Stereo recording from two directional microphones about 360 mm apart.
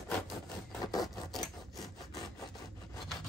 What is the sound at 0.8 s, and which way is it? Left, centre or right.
Rub, centre.